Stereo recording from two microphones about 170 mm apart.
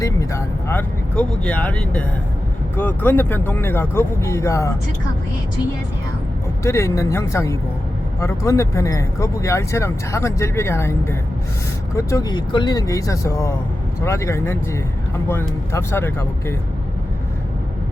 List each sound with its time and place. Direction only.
0.0 s speech: 20° left (ahead or behind)
6.6 s speech: 15° left (ahead or behind)